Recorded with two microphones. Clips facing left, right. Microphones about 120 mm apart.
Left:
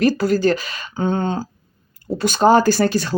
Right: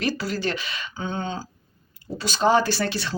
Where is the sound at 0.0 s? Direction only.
45° left (ahead or behind).